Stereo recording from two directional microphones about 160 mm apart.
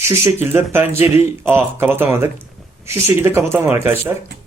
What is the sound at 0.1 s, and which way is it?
Speech, 15° right (ahead or behind).